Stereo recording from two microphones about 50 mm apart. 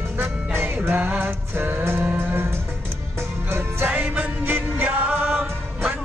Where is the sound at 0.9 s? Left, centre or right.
Right.